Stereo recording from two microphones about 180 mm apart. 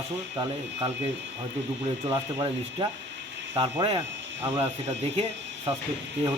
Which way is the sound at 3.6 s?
35° right (ahead or behind).